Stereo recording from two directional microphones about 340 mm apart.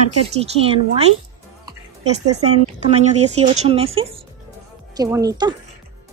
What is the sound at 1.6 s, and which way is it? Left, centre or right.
Music, centre.